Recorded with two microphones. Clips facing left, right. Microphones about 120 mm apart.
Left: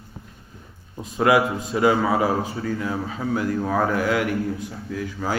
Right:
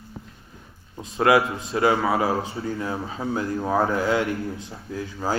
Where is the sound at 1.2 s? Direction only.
20° left (ahead or behind).